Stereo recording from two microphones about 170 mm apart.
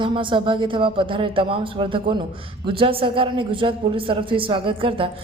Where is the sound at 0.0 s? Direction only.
30° right (ahead or behind).